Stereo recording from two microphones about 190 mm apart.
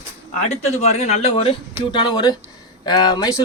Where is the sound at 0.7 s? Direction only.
35° left (ahead or behind).